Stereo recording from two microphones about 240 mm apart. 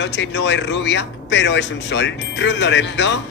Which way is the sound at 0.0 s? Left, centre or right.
Left.